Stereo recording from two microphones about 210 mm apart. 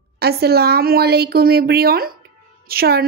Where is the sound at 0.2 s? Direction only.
50° right (ahead or behind).